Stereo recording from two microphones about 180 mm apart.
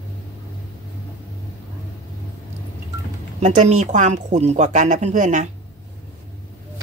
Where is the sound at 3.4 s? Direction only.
40° right (ahead or behind).